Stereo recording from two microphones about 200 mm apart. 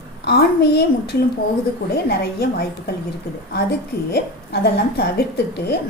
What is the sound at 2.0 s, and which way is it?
Speech, 50° left (ahead or behind).